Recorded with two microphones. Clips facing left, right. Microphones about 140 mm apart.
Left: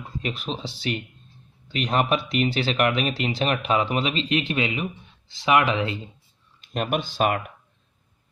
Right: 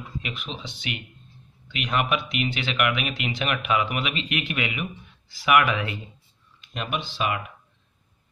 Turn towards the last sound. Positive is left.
turn(degrees=45)  # may be behind; listen again after turning